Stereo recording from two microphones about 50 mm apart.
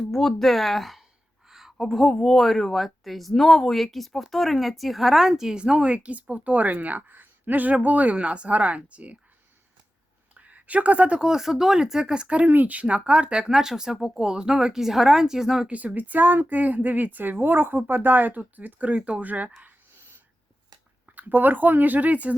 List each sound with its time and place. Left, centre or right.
0.0 s speech: centre; by 9.1 s right
10.3 s a sound: right
11.2 s speech: centre
13.4 s speech: centre
15.7 s speech: right
21.1 s speech: right